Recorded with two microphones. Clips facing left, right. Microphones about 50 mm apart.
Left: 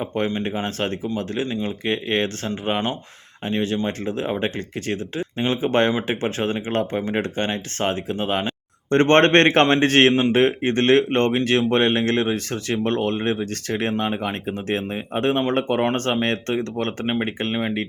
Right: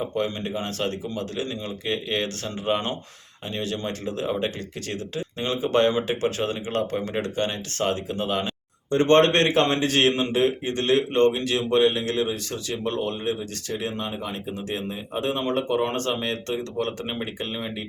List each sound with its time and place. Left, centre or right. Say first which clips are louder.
0.0 s speech: left 3 dB; left
8.9 s speech: left 3 dB; left